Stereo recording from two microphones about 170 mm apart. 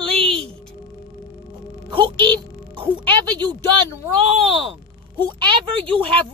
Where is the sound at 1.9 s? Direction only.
30° right (ahead or behind).